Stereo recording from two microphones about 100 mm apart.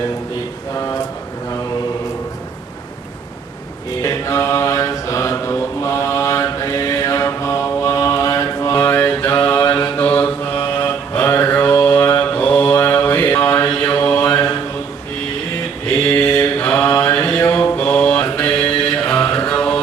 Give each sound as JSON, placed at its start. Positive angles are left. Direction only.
{"t": 4.0, "sound": "mantra", "side_deg": 30}
{"t": 8.7, "sound": "mantra", "side_deg": 20}
{"t": 9.6, "sound": "mantra", "side_deg": 35}
{"t": 16.2, "sound": "mantra", "side_deg": 25}
{"t": 17.6, "sound": "mantra", "side_deg": 20}
{"t": 19.5, "sound": "music", "side_deg": 10}